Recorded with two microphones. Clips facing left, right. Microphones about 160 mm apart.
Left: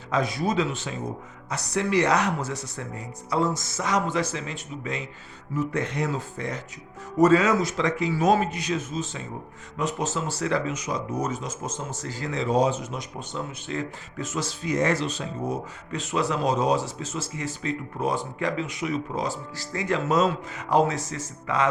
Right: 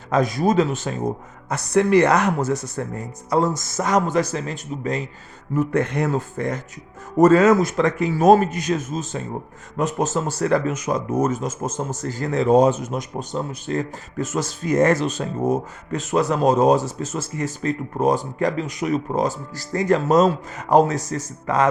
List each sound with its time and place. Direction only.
0.1 s speech: 45° right (ahead or behind)
5.5 s speech: 55° right (ahead or behind)